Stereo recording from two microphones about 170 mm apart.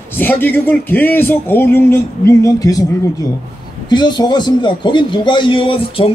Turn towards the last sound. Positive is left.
turn(degrees=30)  # may be behind; listen again after turning